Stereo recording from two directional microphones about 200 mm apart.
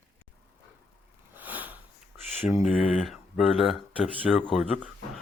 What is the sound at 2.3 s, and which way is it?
Mantra, 10° right (ahead or behind).